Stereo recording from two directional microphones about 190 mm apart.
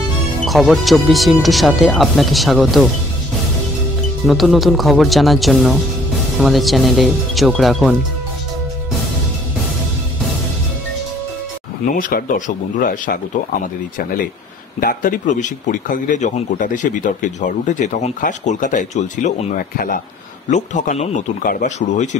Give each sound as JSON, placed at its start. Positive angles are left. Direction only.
{"t": 0.5, "sound": "speech", "side_deg": 0}
{"t": 4.3, "sound": "speech", "side_deg": 0}
{"t": 11.8, "sound": "speech", "side_deg": 45}
{"t": 14.8, "sound": "a man's voice", "side_deg": 50}